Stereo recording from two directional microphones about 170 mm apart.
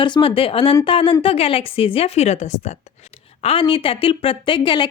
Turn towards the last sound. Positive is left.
turn(degrees=30)  # may be behind; listen again after turning